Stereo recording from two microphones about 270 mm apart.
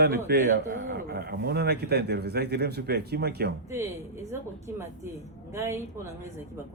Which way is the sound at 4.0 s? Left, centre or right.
Centre.